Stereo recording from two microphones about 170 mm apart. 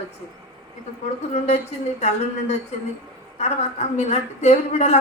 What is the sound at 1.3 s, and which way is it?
Speech, 40° left (ahead or behind).